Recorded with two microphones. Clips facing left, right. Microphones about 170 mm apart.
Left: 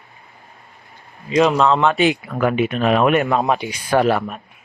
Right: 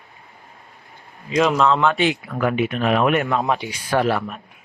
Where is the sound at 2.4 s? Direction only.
20° left (ahead or behind).